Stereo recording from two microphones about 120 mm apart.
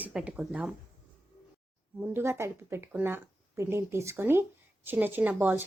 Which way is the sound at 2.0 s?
20° right (ahead or behind).